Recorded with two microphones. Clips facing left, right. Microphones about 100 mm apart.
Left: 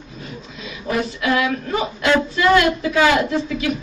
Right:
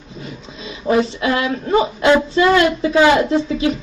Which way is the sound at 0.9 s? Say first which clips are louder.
Right 4 dB; 30° right (ahead or behind).